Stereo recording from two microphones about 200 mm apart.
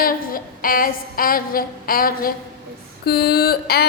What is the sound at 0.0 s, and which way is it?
A woman's voice, 45° left (ahead or behind).